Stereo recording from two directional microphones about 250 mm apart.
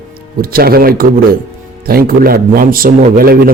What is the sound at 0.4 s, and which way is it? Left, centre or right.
A man's voice, right.